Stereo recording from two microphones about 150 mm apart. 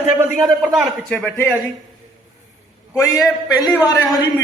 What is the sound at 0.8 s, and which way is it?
Speech, centre (ahead or behind).